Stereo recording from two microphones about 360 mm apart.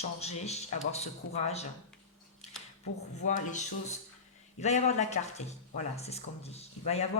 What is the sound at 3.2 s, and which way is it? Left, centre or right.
Speech, centre.